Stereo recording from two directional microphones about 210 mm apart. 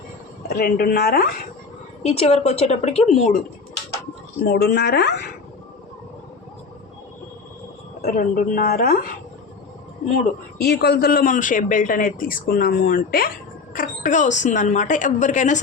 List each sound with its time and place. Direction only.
0.4 s speech: 45° left (ahead or behind)
2.0 s speech: 30° left (ahead or behind)
4.4 s speech: 50° left (ahead or behind)
8.0 s speech: 40° left (ahead or behind)
10.6 s speech: 50° left (ahead or behind)